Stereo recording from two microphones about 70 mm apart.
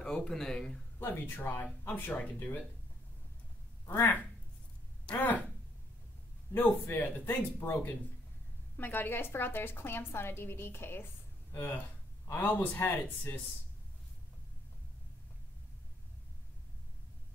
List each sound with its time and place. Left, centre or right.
0.0 s speech: centre
0.9 s speech: left
3.8 s speech: left
5.0 s speech: left
6.5 s a woman's voice: left